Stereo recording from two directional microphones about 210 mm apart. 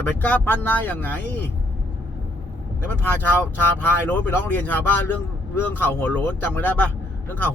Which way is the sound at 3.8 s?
10° left (ahead or behind).